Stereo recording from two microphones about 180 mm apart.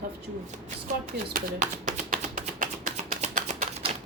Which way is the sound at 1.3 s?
50° right (ahead or behind).